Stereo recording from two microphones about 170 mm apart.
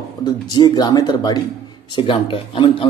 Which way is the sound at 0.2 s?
25° left (ahead or behind).